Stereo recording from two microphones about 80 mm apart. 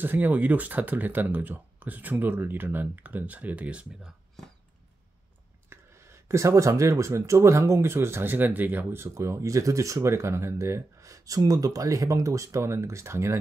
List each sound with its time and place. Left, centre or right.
0.0 s speech: right
5.7 s a sound: right
6.2 s speech: right